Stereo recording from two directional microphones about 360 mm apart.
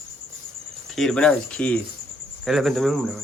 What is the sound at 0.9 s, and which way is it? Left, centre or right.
A man's voice, centre.